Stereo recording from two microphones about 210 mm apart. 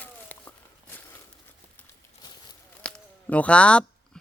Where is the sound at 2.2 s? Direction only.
20° left (ahead or behind).